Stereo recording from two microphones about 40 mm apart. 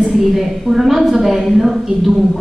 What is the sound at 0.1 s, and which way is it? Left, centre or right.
A woman's voice, centre.